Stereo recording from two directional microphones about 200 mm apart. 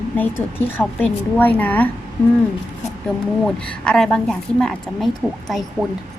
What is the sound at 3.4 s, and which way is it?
A woman's voice, 5° left (ahead or behind).